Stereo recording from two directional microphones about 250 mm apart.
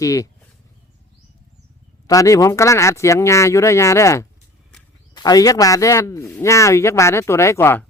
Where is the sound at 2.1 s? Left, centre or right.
Centre.